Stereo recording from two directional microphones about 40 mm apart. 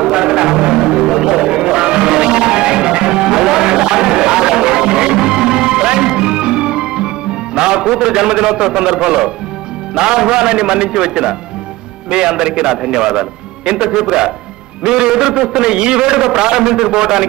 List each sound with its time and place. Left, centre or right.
0.0 s music: centre
7.5 s a man's voice: right